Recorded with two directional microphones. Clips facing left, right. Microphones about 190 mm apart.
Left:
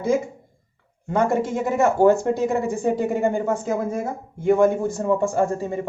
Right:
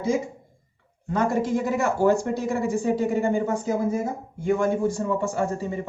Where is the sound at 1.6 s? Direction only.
55° left (ahead or behind).